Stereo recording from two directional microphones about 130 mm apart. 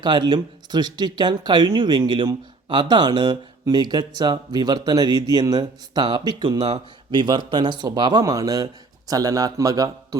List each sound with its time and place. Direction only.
0.0 s speech: 35° right (ahead or behind)